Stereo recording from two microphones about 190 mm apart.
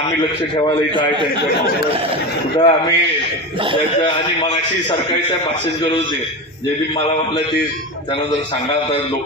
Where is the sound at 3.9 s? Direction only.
25° left (ahead or behind).